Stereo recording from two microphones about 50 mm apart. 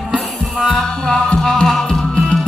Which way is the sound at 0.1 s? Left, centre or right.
Right.